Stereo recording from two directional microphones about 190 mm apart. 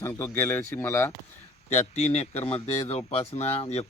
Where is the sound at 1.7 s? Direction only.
35° left (ahead or behind).